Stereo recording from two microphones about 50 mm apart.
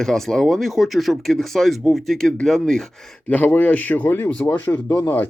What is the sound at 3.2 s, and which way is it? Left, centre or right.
Speech, left.